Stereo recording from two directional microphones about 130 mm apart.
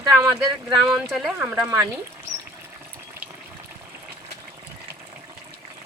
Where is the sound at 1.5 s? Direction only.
20° right (ahead or behind).